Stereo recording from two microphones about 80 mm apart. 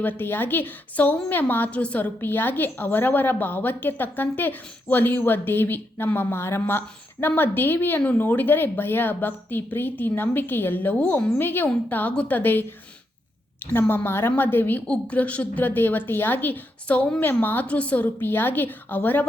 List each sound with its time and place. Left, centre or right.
0.0 s a woman's voice: left